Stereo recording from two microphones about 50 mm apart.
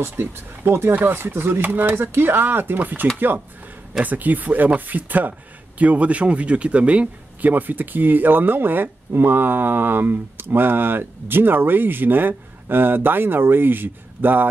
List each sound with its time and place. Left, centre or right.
0.0 s a man's voice: right
7.5 s speech: right